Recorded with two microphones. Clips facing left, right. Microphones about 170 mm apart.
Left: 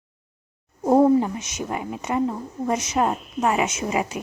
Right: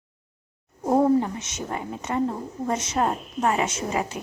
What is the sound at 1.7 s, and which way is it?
A woman's voice, 15° left (ahead or behind).